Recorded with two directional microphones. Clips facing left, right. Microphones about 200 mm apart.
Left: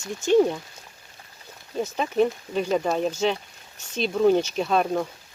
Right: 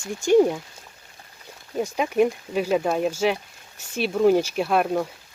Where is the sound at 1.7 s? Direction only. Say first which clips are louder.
Right 2 dB; 10° right (ahead or behind).